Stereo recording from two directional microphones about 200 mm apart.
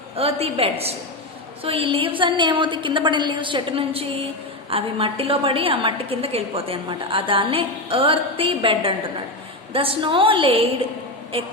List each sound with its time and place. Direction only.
0.2 s a woman's voice: 30° right (ahead or behind)